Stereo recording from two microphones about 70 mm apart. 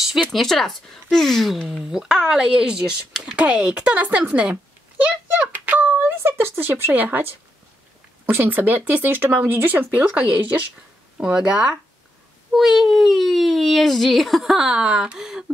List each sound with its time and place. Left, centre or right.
0.3 s speech: centre
5.5 s speech: right
12.5 s speech: centre